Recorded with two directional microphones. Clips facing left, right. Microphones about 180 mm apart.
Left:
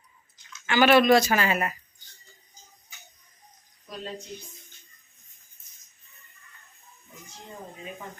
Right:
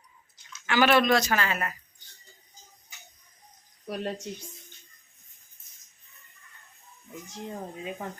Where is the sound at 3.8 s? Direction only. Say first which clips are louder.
Right 6 dB; 65° right (ahead or behind).